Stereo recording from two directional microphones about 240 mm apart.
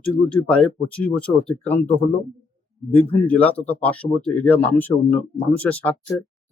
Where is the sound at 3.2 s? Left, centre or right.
Centre.